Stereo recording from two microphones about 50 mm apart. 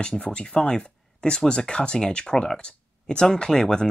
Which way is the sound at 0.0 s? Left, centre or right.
Centre.